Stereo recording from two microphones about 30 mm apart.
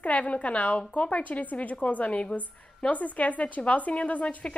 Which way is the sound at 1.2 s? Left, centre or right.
Left.